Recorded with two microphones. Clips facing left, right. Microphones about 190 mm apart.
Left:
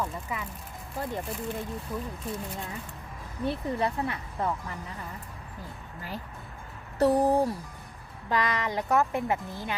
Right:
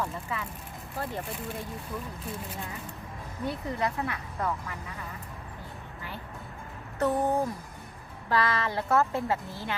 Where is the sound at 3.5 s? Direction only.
25° left (ahead or behind).